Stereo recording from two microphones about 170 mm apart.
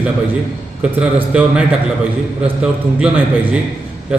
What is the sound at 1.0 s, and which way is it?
Speech, 5° right (ahead or behind).